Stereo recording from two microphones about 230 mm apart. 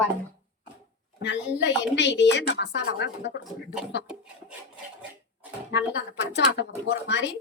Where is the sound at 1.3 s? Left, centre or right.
Centre.